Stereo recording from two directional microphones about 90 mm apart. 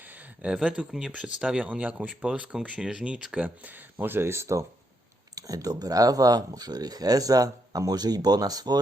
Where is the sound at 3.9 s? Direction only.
25° right (ahead or behind).